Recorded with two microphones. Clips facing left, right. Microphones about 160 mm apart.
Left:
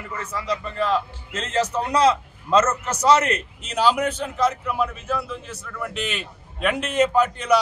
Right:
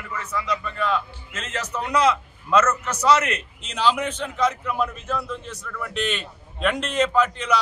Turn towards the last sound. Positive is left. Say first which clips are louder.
# left 2 dB
turn(degrees=10)  # may be behind; listen again after turning